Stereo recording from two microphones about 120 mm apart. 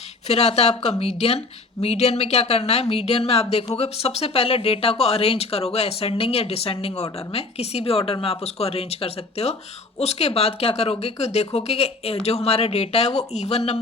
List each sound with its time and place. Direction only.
0.3 s speech: 60° left (ahead or behind)